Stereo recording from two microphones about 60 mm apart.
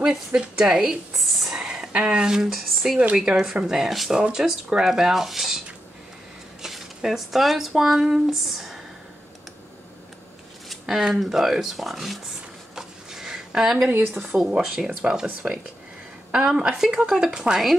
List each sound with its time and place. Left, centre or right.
0.0 s a woman's voice: centre
6.6 s speech: centre
10.7 s speech: centre
12.7 s a sound: centre
14.4 s speech: centre